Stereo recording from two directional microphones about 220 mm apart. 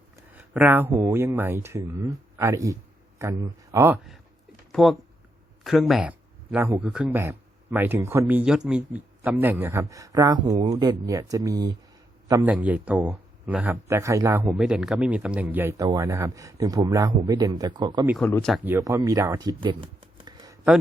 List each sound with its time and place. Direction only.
0.3 s speech: 10° right (ahead or behind)
18.2 s speech: 5° left (ahead or behind)
18.5 s speech: 10° right (ahead or behind)